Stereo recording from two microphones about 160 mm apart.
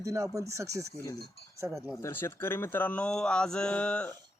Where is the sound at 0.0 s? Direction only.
20° right (ahead or behind).